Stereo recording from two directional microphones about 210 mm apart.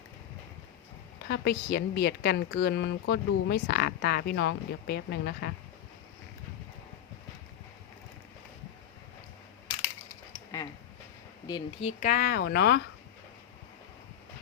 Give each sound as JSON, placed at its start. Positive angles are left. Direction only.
{"t": 1.3, "sound": "a woman's voice", "side_deg": 50}
{"t": 10.5, "sound": "a sound", "side_deg": 15}
{"t": 11.4, "sound": "speech", "side_deg": 25}